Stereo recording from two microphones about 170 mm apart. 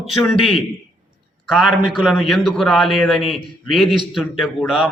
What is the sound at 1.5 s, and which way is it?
A man's voice, centre (ahead or behind).